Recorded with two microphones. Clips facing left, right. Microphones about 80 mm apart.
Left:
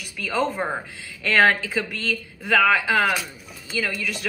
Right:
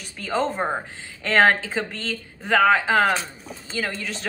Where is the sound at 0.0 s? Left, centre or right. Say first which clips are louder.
Even; right.